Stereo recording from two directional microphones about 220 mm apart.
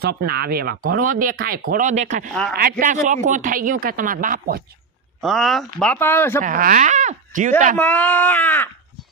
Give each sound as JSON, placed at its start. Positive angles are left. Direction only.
{"t": 0.0, "sound": "speech", "side_deg": -45}
{"t": 5.2, "sound": "speech", "side_deg": 0}
{"t": 6.4, "sound": "speech", "side_deg": -40}
{"t": 7.7, "sound": "speech", "side_deg": 5}